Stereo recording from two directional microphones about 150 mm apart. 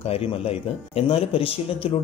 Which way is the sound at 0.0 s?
40° left (ahead or behind).